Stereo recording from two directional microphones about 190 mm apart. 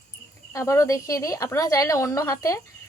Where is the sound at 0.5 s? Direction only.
15° left (ahead or behind).